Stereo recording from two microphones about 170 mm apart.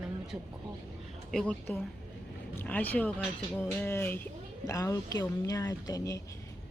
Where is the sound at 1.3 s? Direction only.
5° left (ahead or behind).